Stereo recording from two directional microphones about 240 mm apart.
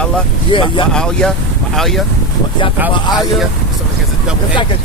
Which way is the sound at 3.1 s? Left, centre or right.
Centre.